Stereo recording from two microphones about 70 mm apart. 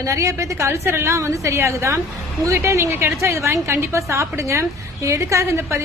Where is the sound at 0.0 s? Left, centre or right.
Right.